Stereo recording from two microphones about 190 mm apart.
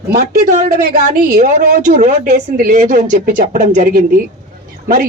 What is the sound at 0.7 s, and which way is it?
A woman's voice, 45° right (ahead or behind).